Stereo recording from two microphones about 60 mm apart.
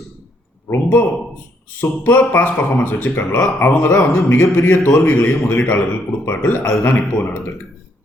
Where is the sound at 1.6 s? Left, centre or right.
Left.